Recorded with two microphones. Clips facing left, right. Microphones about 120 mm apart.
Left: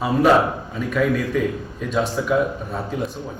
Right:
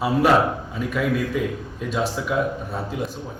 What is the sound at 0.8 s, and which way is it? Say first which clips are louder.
Speech: left 1 dB; 5° right (ahead or behind).